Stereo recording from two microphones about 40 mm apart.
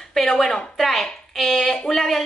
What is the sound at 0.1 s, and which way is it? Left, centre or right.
A woman's voice, centre.